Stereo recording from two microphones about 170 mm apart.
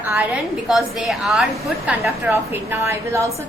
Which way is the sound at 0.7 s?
Centre (ahead or behind).